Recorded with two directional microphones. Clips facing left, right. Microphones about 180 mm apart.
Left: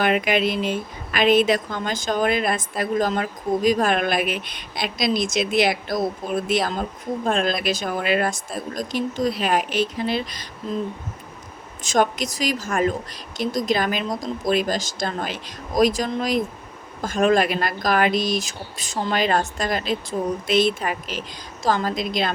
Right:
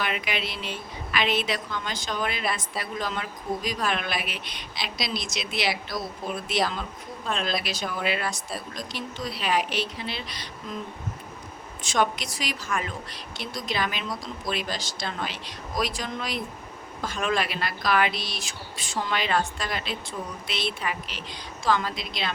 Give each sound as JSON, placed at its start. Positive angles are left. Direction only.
{"t": 0.0, "sound": "speech", "side_deg": 50}
{"t": 11.8, "sound": "speech", "side_deg": 45}